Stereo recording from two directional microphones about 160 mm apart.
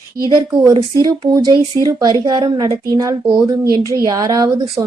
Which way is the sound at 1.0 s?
25° right (ahead or behind).